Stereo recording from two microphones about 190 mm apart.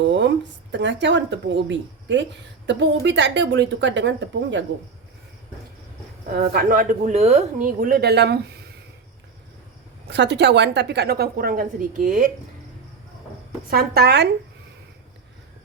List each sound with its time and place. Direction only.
0.0 s speech: 70° right (ahead or behind)
6.5 s speech: 50° right (ahead or behind)
10.1 s a woman's voice: 65° right (ahead or behind); by 12.3 s 45° right (ahead or behind)
13.7 s a woman's voice: 55° right (ahead or behind)